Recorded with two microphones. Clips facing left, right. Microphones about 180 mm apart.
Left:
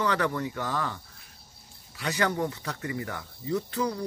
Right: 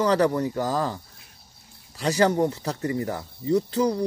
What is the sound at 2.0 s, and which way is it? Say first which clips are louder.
Speech: right 7 dB; 35° right (ahead or behind).